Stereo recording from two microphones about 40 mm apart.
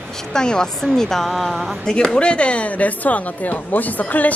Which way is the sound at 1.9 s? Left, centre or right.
Left.